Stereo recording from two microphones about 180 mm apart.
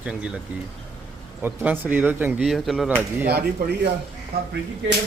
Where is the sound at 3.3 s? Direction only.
60° right (ahead or behind).